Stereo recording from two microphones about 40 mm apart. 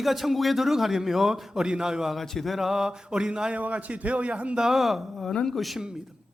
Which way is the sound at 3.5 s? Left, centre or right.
Right.